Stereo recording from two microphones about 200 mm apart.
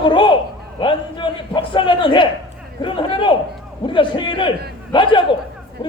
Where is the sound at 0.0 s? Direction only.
25° left (ahead or behind).